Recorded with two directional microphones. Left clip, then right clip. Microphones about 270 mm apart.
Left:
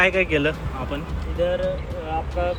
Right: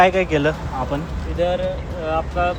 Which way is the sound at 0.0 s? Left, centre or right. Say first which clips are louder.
Right 3 dB; centre.